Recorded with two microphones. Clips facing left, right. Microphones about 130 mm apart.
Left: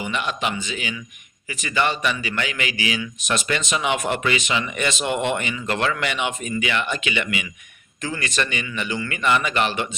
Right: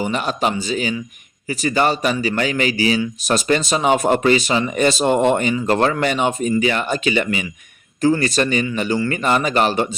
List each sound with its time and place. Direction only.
0.0 s speech: 40° right (ahead or behind)